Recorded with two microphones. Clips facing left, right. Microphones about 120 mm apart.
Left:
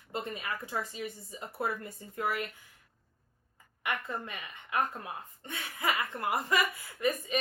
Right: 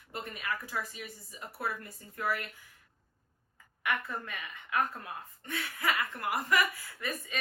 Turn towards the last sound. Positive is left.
turn(degrees=15)  # may be behind; listen again after turning